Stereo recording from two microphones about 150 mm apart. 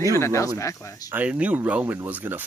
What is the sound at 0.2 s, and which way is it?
Speech, 20° left (ahead or behind).